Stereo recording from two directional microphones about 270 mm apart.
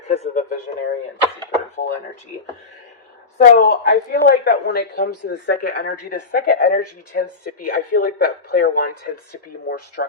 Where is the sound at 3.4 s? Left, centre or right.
Left.